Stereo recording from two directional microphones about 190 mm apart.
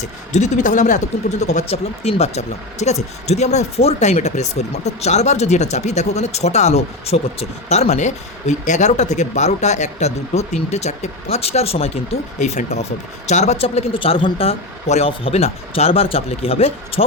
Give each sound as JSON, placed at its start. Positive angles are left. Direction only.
{"t": 0.3, "sound": "speech", "side_deg": 40}